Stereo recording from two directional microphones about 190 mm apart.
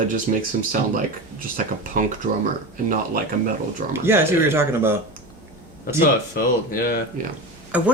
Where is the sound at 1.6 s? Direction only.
45° right (ahead or behind).